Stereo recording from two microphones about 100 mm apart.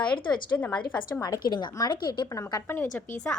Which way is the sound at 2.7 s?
20° left (ahead or behind).